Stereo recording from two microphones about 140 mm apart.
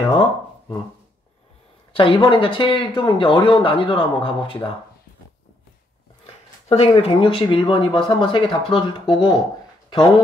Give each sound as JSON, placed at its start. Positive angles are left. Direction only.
{"t": 2.0, "sound": "speech", "side_deg": 35}
{"t": 6.2, "sound": "a sound", "side_deg": 45}
{"t": 6.9, "sound": "speech", "side_deg": 40}